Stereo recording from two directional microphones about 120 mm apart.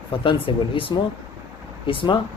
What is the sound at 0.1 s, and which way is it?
Speech, 45° left (ahead or behind).